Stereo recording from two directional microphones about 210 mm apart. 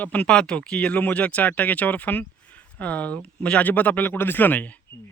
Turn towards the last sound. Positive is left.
turn(degrees=10)  # may be behind; listen again after turning